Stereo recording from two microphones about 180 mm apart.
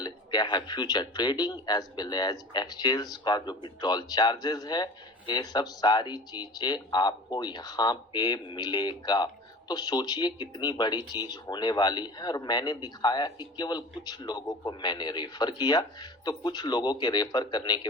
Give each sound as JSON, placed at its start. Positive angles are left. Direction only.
{"t": 0.0, "sound": "speech", "side_deg": 25}